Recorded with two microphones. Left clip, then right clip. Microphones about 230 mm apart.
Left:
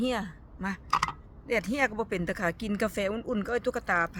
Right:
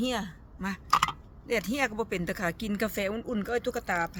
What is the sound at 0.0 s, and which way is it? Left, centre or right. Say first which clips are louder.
Speech: left 1 dB; centre.